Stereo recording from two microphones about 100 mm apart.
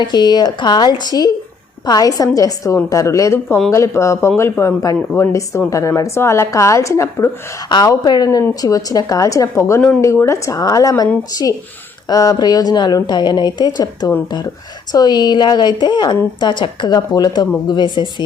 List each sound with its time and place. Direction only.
0.0 s a woman's voice: 45° left (ahead or behind); by 7.3 s 30° left (ahead or behind)
7.7 s a woman's voice: 40° left (ahead or behind)